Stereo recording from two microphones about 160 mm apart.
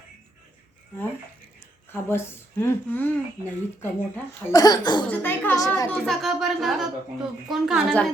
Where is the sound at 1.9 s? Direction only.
15° left (ahead or behind).